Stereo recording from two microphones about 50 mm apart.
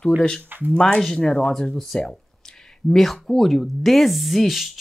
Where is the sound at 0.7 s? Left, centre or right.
Centre.